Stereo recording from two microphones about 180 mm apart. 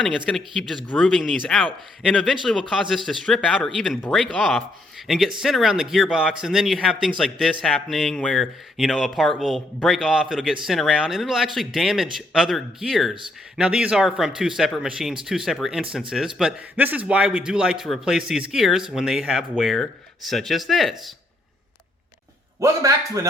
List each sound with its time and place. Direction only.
0.3 s speech: centre (ahead or behind)
22.6 s a man's voice: 20° right (ahead or behind)